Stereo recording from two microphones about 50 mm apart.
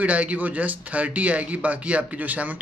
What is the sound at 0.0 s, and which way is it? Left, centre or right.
A woman's voice, right.